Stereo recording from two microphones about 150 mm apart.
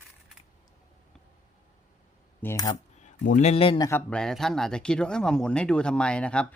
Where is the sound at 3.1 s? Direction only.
55° left (ahead or behind).